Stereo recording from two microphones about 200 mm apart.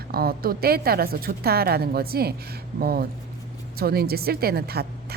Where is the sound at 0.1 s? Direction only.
50° right (ahead or behind).